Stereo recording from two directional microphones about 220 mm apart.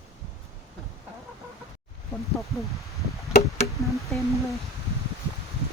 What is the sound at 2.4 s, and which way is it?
Speech, centre (ahead or behind).